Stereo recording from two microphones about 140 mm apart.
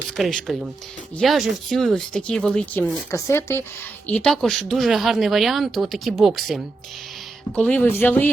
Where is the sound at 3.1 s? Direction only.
20° left (ahead or behind).